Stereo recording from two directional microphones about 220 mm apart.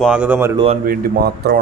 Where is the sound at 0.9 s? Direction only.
40° right (ahead or behind).